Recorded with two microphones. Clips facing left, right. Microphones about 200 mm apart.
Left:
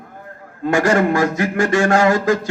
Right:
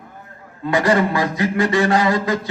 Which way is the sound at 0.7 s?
45° left (ahead or behind).